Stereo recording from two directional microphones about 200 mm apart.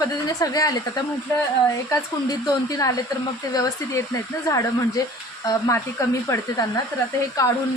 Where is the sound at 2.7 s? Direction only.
15° left (ahead or behind).